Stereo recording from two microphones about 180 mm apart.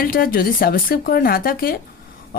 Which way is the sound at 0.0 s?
55° left (ahead or behind).